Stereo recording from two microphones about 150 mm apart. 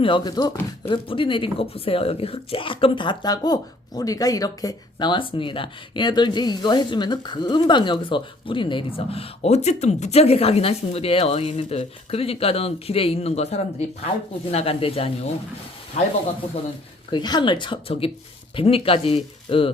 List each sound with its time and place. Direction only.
0.0 s speech: 30° left (ahead or behind)
17.1 s speech: 30° left (ahead or behind)